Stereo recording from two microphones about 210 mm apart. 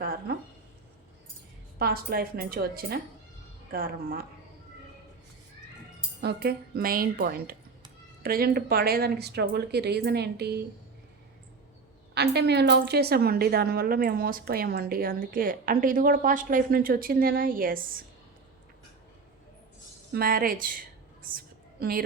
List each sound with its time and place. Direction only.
1.8 s a woman's voice: 45° right (ahead or behind)
6.2 s a woman's voice: 50° right (ahead or behind)
12.1 s a woman's voice: 50° right (ahead or behind)
20.1 s a sound: 45° right (ahead or behind)